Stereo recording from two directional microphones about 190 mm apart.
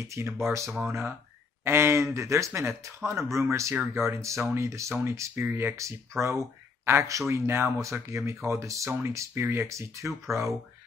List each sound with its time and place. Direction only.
0.0 s speech: 15° right (ahead or behind)